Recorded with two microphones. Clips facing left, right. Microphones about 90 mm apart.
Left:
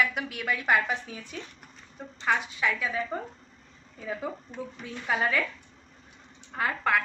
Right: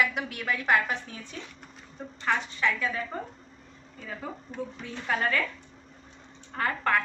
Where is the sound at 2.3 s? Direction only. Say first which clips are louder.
Even; 10° left (ahead or behind).